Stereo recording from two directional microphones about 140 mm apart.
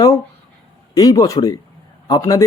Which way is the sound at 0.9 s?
25° left (ahead or behind).